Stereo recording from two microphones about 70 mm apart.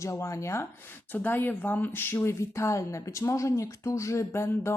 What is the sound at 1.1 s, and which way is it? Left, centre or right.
A woman's voice, left.